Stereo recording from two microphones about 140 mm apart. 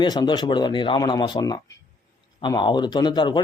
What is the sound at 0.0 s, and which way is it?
Speech, 35° left (ahead or behind).